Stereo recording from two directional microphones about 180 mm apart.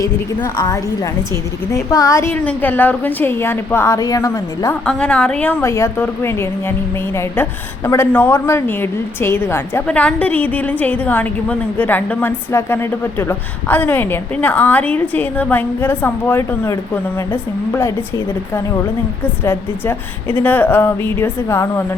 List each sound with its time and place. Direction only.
0.5 s a woman's voice: 20° left (ahead or behind)
4.9 s a woman's voice: 5° left (ahead or behind)
7.9 s a woman's voice: 10° left (ahead or behind)